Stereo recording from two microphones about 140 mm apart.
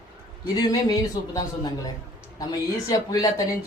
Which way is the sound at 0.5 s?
25° left (ahead or behind).